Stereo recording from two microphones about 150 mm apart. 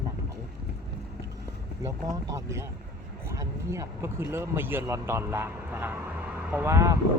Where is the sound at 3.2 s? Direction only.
20° right (ahead or behind).